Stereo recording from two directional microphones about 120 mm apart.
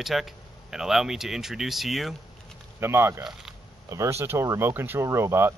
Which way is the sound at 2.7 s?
20° right (ahead or behind).